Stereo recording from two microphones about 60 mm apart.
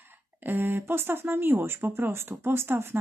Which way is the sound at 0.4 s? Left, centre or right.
Right.